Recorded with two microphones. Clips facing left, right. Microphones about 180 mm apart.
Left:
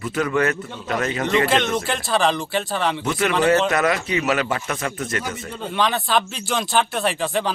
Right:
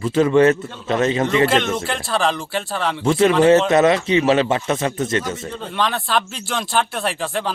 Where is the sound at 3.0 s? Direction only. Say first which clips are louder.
Right 8 dB; 30° right (ahead or behind).